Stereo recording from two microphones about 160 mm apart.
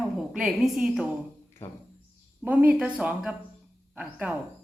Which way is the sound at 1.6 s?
15° left (ahead or behind).